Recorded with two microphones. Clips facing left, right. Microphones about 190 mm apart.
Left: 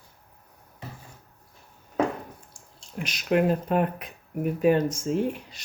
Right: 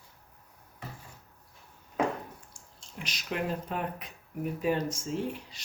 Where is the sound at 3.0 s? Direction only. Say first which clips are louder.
Left 11 dB; 55° left (ahead or behind).